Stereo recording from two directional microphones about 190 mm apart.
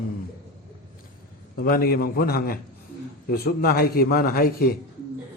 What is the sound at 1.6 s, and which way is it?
A man's voice, 50° left (ahead or behind).